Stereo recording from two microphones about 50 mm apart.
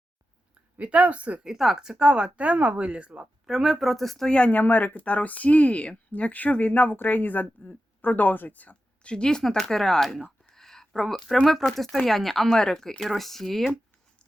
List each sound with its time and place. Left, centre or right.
0.8 s speech: right
1.5 s speech: centre
3.4 s speech: centre
4.3 s speech: left
4.6 s speech: left
9.1 s speech: centre
10.5 s a sound: centre
11.4 s speech: centre